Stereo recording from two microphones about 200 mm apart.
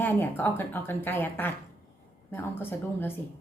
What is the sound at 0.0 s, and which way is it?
A woman's voice, 10° left (ahead or behind).